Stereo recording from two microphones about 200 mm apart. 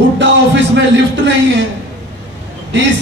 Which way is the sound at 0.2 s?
65° right (ahead or behind).